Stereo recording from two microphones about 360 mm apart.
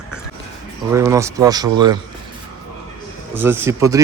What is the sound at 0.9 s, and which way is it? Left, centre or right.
Speech, centre.